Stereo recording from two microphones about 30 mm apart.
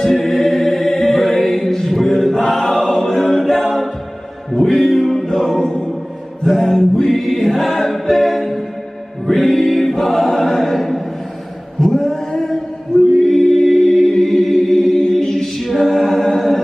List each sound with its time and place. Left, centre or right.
0.0 s choir: centre
3.0 s a capella: centre
3.4 s a capella: centre
4.7 s music: centre
5.2 s music: centre
6.4 s mantra: centre
7.1 s choir: centre
7.9 s a capella: centre
9.2 s choir: centre
11.8 s a sound: centre
13.2 s choir: centre
15.6 s a capella: centre